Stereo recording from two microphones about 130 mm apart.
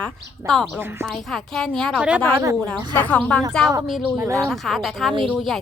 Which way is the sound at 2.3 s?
25° right (ahead or behind).